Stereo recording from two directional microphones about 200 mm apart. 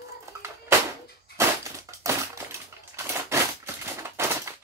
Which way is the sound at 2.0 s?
15° right (ahead or behind).